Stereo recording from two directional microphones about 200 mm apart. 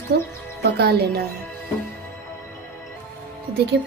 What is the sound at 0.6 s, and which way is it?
Speech, 50° right (ahead or behind).